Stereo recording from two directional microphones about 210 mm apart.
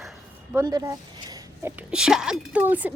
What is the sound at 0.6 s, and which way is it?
Speech, 15° right (ahead or behind).